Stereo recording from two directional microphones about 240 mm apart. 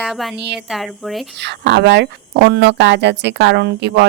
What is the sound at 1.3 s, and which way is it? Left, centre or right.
Speech, right.